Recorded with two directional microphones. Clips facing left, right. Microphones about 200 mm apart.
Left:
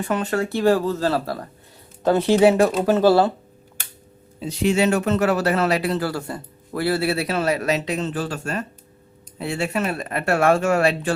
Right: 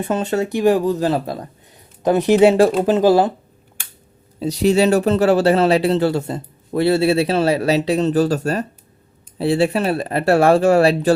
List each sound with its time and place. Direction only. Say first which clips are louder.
0.0 s speech: right 3 dB; 25° right (ahead or behind)
2.8 s speech: right 2 dB; 20° right (ahead or behind)
4.4 s speech: right 5 dB; 40° right (ahead or behind)